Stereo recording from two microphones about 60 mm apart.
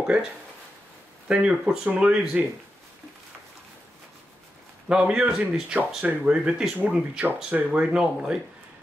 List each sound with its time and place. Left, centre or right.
0.0 s speech: centre
4.8 s speech: centre